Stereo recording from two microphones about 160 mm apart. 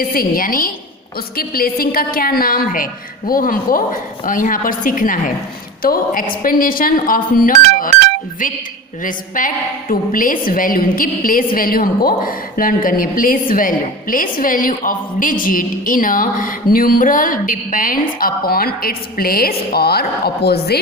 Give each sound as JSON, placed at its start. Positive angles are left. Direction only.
{"t": 0.0, "sound": "a woman's voice", "side_deg": 65}
{"t": 9.0, "sound": "a woman's voice", "side_deg": 55}